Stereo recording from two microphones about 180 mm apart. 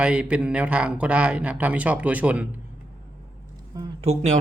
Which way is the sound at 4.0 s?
35° right (ahead or behind).